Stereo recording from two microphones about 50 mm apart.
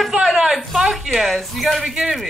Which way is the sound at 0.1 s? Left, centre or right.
Centre.